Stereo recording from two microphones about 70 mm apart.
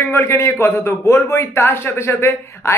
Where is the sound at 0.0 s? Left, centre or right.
Left.